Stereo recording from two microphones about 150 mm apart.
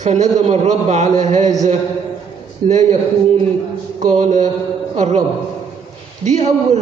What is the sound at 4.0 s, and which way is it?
Speech, 50° right (ahead or behind).